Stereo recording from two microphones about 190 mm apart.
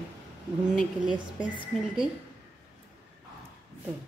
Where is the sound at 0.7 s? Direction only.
5° right (ahead or behind).